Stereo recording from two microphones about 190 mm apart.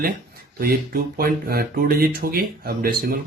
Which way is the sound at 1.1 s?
55° right (ahead or behind).